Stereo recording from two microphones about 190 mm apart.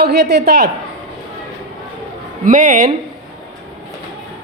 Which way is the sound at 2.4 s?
45° right (ahead or behind).